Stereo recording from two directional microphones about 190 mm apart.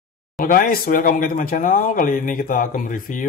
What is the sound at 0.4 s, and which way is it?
Speech, 45° left (ahead or behind).